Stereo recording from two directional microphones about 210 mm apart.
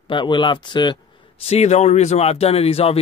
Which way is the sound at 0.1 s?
20° left (ahead or behind).